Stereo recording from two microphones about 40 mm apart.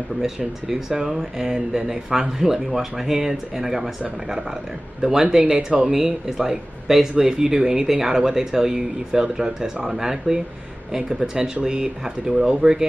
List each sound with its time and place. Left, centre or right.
0.7 s speech: centre
5.9 s speech: centre